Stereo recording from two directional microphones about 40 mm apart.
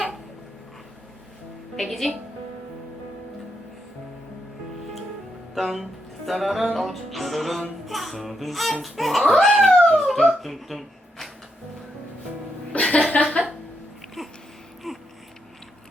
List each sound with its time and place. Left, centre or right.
1.8 s music: centre
5.5 s speech: centre
6.7 s music: centre
9.9 s speech: centre
12.8 s chuckle: left
14.2 s a sound: centre